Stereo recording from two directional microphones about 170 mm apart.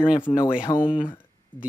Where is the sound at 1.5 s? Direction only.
10° left (ahead or behind).